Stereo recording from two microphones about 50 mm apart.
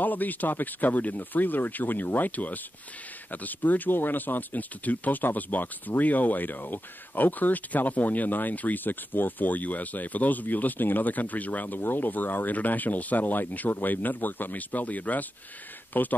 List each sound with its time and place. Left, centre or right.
0.0 s speech: left